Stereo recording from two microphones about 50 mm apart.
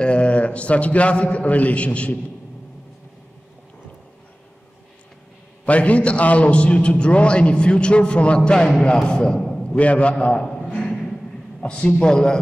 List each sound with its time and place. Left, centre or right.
0.0 s a man's voice: left
5.7 s a man's voice: left
9.6 s a man's voice: left
10.4 s a sound: centre
11.6 s speech: left